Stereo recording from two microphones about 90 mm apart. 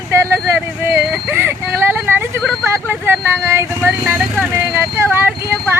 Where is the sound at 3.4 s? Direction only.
30° right (ahead or behind).